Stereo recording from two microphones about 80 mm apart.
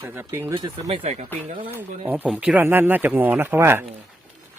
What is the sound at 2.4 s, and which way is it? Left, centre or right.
Speech, centre.